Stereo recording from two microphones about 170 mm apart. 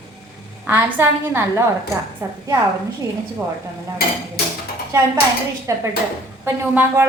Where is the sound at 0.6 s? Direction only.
10° right (ahead or behind).